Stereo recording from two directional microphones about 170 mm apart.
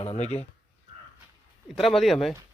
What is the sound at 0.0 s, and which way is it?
Speech, 40° left (ahead or behind).